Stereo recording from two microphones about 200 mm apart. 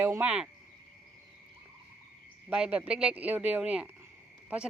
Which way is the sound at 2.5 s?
5° right (ahead or behind).